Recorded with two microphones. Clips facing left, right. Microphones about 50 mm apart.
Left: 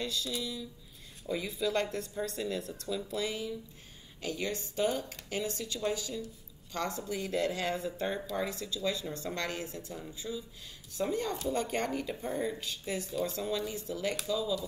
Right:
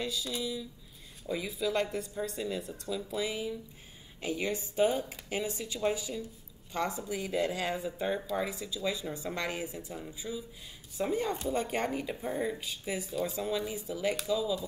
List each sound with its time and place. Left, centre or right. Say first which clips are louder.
0.0 s speech: right 1 dB; centre